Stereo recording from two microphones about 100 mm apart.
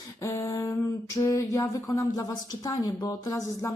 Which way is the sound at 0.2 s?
30° left (ahead or behind).